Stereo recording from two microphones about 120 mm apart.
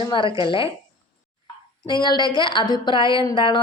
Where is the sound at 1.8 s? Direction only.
40° left (ahead or behind).